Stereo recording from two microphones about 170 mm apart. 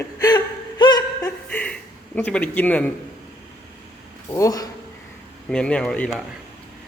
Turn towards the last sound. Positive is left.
turn(degrees=5)  # may be behind; listen again after turning